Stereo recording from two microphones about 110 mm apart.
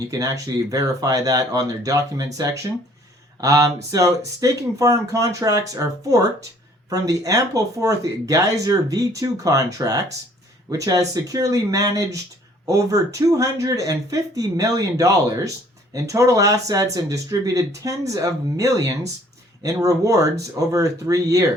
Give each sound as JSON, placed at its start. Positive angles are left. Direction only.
{"t": 0.1, "sound": "speech", "side_deg": -35}